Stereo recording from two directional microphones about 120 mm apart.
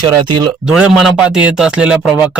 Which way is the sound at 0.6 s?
5° right (ahead or behind).